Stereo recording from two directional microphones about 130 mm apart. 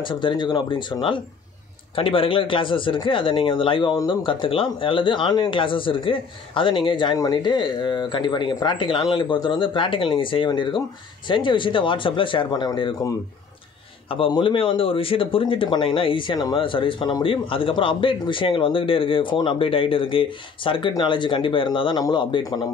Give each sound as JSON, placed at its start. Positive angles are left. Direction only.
{"t": 0.0, "sound": "speech", "side_deg": 40}
{"t": 14.0, "sound": "speech", "side_deg": 45}